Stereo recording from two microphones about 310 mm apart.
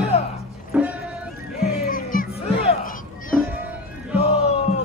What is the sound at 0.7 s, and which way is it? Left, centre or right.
Music, centre.